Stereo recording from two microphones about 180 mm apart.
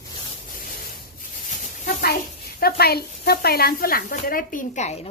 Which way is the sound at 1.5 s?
45° left (ahead or behind).